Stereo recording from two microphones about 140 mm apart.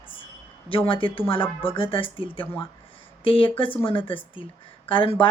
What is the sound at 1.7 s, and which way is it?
A woman's voice, 40° left (ahead or behind).